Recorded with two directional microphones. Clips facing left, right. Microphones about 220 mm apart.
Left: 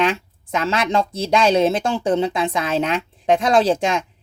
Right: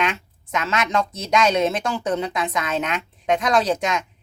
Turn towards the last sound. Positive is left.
turn(degrees=30)  # may be behind; listen again after turning